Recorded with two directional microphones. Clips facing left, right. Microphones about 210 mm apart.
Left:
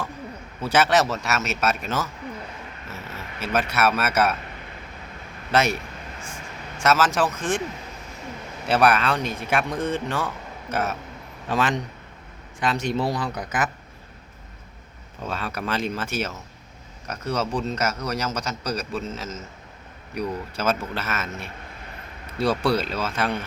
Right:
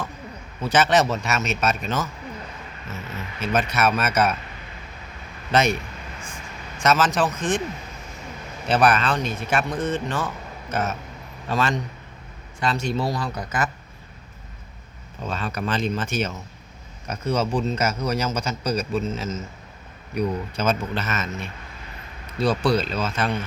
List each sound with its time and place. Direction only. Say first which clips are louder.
0.6 s a man's voice: right 1 dB; 10° left (ahead or behind)
5.5 s speech: right 1 dB; 5° left (ahead or behind)
6.7 s a man's voice: even; 5° left (ahead or behind)
8.6 s a man's voice: even; 10° left (ahead or behind)
15.2 s a man's voice: right 2 dB; 10° left (ahead or behind)
22.7 s a man's voice: right 1 dB; 10° left (ahead or behind)